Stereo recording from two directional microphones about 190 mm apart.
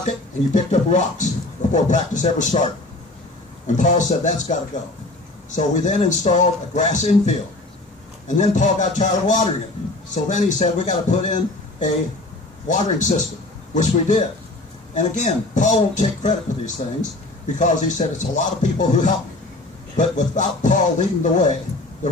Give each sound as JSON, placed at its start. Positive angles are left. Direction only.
{"t": 0.0, "sound": "a man's voice", "side_deg": 35}
{"t": 12.6, "sound": "a man's voice", "side_deg": 40}